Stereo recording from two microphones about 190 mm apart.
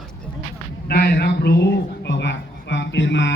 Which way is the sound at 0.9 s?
60° left (ahead or behind).